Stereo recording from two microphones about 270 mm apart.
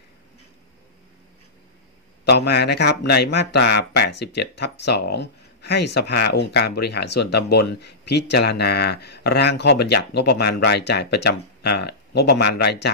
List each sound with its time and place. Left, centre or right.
2.2 s speech: left